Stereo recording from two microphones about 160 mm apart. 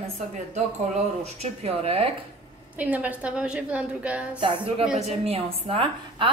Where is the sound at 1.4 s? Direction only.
40° right (ahead or behind).